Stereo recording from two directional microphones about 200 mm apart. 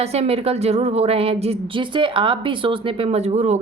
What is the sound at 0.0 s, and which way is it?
Speech, 30° right (ahead or behind).